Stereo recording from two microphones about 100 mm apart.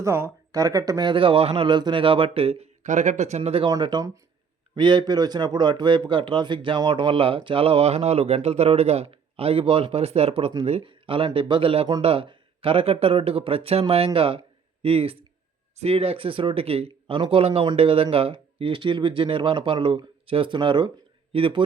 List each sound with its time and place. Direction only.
0.0 s speech: 30° right (ahead or behind)
1.1 s speech: 60° right (ahead or behind)
1.6 s speech: 50° right (ahead or behind); by 2.6 s 75° right (ahead or behind)
3.2 s speech: 90° right
3.7 s speech: 50° right (ahead or behind); by 15.2 s 70° right (ahead or behind)
15.8 s speech: 80° right; by 21.6 s 60° right (ahead or behind)